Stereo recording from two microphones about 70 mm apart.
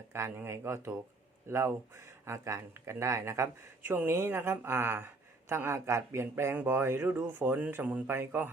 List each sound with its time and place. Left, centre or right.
0.1 s a woman's voice: right